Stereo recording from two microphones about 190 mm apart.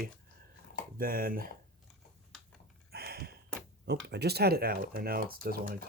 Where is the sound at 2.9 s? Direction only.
55° right (ahead or behind).